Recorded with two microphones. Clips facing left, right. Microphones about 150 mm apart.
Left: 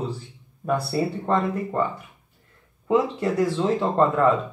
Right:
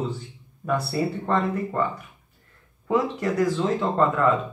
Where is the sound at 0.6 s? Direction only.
30° left (ahead or behind).